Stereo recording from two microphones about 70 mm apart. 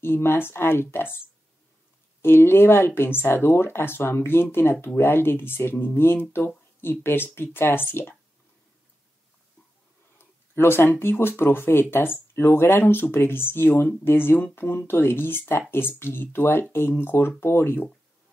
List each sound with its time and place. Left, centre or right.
0.0 s speech: left
2.2 s speech: left
10.1 s speech: left